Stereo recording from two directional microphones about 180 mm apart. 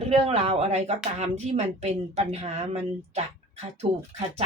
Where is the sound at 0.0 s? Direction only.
35° right (ahead or behind).